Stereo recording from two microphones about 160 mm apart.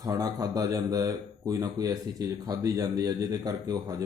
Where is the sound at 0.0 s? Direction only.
20° right (ahead or behind).